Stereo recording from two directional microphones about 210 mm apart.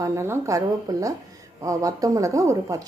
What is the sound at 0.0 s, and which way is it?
Speech, 15° right (ahead or behind).